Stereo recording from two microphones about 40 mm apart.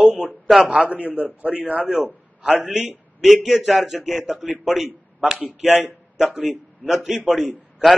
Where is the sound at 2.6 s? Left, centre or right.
Centre.